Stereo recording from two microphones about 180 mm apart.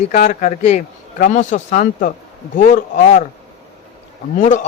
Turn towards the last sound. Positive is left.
turn(degrees=45)  # may be behind; listen again after turning